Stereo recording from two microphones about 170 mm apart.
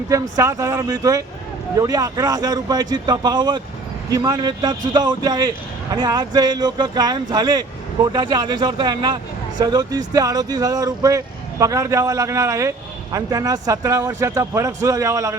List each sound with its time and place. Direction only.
0.1 s a man's voice: 20° right (ahead or behind)